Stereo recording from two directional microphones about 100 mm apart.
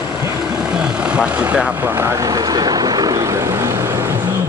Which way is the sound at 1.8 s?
25° right (ahead or behind).